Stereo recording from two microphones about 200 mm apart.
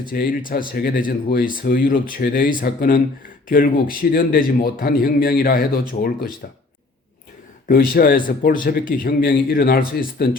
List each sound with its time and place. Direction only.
0.0 s speech: 45° left (ahead or behind)
7.7 s speech: 45° left (ahead or behind)